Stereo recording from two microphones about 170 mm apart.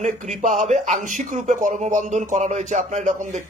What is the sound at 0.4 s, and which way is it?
Speech, 45° right (ahead or behind).